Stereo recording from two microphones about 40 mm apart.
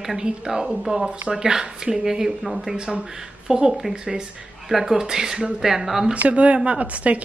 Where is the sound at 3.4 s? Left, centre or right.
Centre.